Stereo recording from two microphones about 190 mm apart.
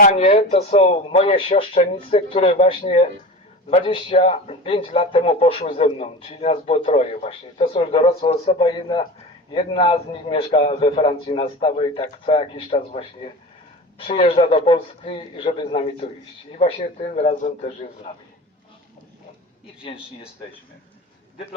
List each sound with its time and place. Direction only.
0.0 s a man's voice: 35° left (ahead or behind)